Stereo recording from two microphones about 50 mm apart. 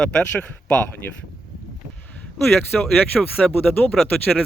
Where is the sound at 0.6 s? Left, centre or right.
Left.